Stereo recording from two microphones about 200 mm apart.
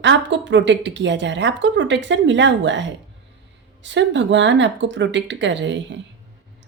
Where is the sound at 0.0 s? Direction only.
65° right (ahead or behind).